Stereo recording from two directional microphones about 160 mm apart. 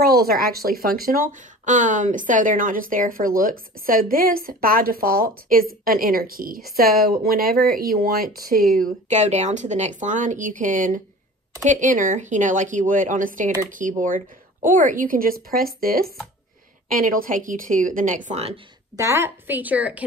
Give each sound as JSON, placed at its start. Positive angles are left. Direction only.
{"t": 0.0, "sound": "speech", "side_deg": -75}
{"t": 8.7, "sound": "speech", "side_deg": -50}
{"t": 18.9, "sound": "a woman's voice", "side_deg": -15}